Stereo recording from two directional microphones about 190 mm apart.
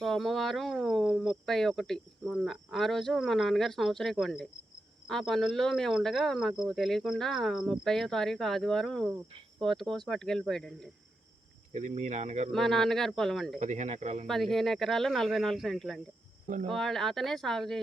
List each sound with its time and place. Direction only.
0.0 s speech: centre (ahead or behind)
11.7 s speech: 35° right (ahead or behind)
12.5 s speech: centre (ahead or behind)
13.6 s speech: 35° right (ahead or behind)
14.3 s speech: centre (ahead or behind)